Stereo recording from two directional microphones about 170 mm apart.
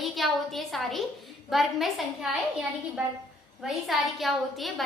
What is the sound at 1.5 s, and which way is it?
A woman's voice, centre (ahead or behind).